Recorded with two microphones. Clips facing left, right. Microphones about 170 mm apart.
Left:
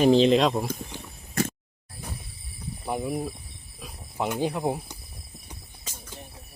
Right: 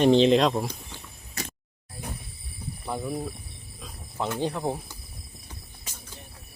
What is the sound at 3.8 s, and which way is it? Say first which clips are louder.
Cricket: left 2 dB; 10° left (ahead or behind).